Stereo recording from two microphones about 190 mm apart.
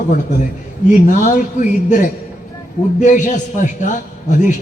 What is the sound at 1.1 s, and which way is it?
A man's voice, 45° left (ahead or behind).